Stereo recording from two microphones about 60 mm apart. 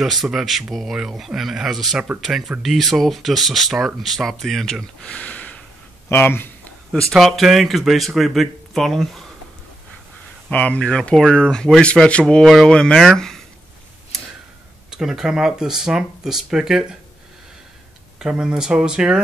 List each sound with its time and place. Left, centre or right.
0.0 s speech: centre
5.0 s speech: left
6.0 s speech: left
7.1 s speech: centre
10.5 s speech: left; by 13.4 s centre
14.9 s speech: centre
18.2 s speech: centre